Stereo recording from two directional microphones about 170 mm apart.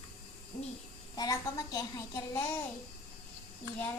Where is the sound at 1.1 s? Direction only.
20° left (ahead or behind).